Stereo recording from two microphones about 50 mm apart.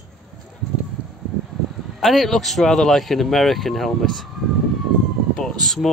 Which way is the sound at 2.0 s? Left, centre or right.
Centre.